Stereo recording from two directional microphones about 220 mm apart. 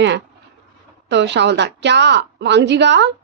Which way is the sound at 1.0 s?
50° right (ahead or behind).